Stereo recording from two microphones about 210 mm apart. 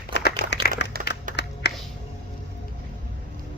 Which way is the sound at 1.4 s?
55° left (ahead or behind).